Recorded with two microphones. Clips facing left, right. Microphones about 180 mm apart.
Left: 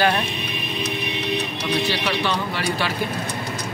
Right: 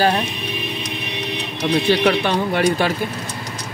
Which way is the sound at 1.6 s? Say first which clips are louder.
Right 12 dB; 55° right (ahead or behind).